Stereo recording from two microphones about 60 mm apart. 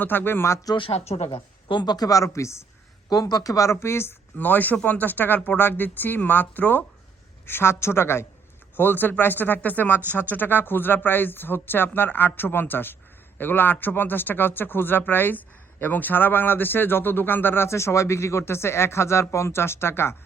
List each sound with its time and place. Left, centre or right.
0.0 s speech: left
2.0 s speech: left
3.1 s a woman's voice: left
3.7 s a woman's voice: left
4.4 s speech: left
7.4 s a woman's voice: left